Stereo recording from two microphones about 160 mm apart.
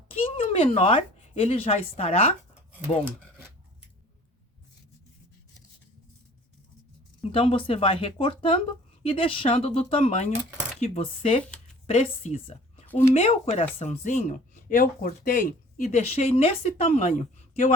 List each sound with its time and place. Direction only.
0.1 s speech: 35° left (ahead or behind)
7.2 s a woman's voice: 35° left (ahead or behind)
12.9 s speech: 15° left (ahead or behind)
13.1 s speech: 35° left (ahead or behind)